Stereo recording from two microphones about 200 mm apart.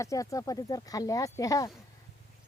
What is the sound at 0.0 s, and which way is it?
Speech, 15° left (ahead or behind).